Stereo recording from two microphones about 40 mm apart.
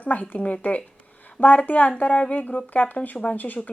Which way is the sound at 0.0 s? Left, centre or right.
Left.